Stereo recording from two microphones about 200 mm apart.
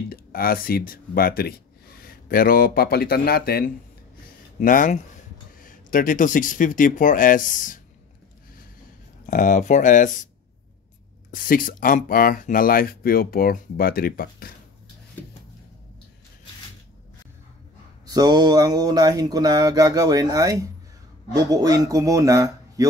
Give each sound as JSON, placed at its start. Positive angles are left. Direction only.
{"t": 0.1, "sound": "speech", "side_deg": 45}
{"t": 9.2, "sound": "speech", "side_deg": 40}
{"t": 11.3, "sound": "speech", "side_deg": 45}
{"t": 18.0, "sound": "mantra", "side_deg": -20}
{"t": 21.5, "sound": "speech", "side_deg": -20}